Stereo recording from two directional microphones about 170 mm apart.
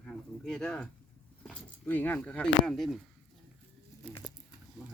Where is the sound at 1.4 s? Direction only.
5° left (ahead or behind).